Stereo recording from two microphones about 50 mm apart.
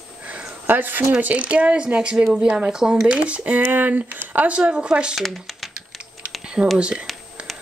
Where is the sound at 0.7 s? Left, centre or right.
Right; by 3.1 s centre.